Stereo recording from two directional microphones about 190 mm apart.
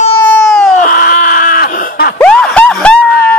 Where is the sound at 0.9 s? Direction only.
50° left (ahead or behind).